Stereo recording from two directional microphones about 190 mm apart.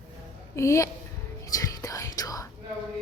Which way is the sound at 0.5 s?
15° left (ahead or behind).